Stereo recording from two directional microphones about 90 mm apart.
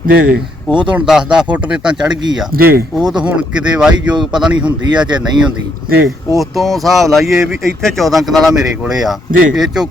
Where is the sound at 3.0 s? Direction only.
5° right (ahead or behind).